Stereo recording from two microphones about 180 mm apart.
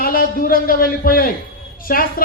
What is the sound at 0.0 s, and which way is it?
A man's voice, 55° left (ahead or behind).